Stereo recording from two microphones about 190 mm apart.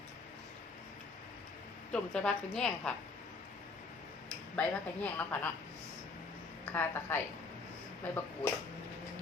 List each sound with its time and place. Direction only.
1.9 s a woman's voice: 5° left (ahead or behind)
4.5 s a woman's voice: 10° left (ahead or behind)
6.7 s a woman's voice: 10° left (ahead or behind)